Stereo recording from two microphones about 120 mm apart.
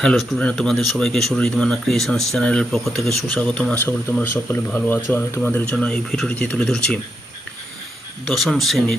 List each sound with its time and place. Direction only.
0.0 s speech: centre (ahead or behind)
8.3 s speech: centre (ahead or behind)